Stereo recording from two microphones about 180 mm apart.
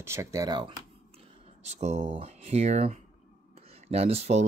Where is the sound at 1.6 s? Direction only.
40° right (ahead or behind).